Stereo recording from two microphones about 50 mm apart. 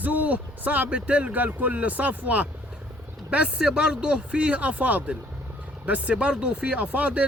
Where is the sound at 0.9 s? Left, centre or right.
Right.